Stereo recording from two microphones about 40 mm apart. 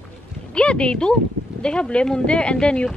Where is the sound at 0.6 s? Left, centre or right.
Left.